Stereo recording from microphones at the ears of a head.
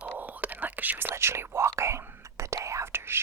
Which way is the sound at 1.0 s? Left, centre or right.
Right.